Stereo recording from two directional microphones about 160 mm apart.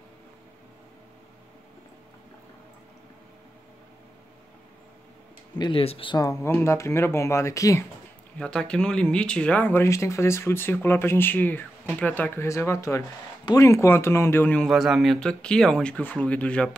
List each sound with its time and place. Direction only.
5.6 s speech: 35° left (ahead or behind)
8.4 s speech: 5° left (ahead or behind)